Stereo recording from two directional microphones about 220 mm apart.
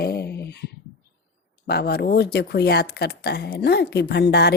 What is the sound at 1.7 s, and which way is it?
Speech, 45° left (ahead or behind).